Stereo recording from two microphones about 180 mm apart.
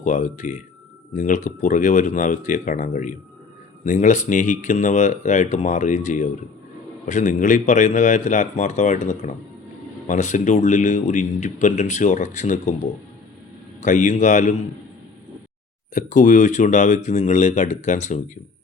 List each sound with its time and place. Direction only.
0.0 s speech: 45° left (ahead or behind)
13.8 s speech: 45° left (ahead or behind)
16.0 s speech: 45° left (ahead or behind)